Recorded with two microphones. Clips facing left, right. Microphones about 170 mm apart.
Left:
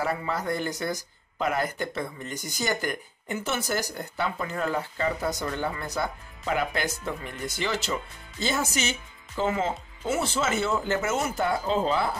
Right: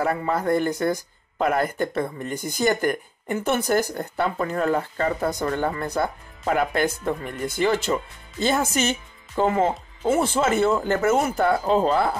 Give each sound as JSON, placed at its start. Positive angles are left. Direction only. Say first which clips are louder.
{"t": 0.0, "sound": "speech", "louder": "right 5 dB", "side_deg": -50}